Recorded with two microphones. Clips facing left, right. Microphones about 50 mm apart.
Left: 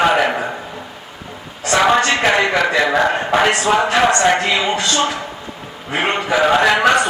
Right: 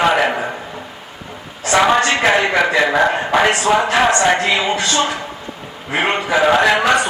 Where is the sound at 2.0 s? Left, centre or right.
Centre.